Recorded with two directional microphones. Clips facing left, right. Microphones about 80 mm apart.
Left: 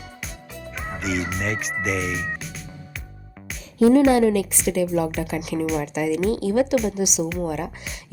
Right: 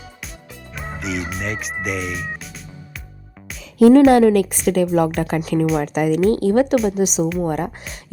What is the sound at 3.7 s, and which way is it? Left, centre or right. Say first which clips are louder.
Speech: right 5 dB; right.